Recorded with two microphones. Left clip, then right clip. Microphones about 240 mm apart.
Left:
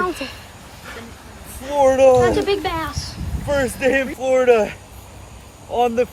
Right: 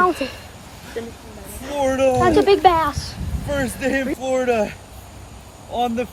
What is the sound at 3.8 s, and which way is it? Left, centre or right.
Speech, centre.